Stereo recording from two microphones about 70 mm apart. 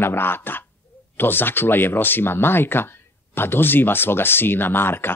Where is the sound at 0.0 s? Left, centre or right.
Left.